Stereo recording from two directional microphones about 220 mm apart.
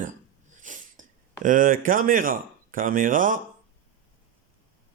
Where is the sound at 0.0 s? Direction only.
35° right (ahead or behind).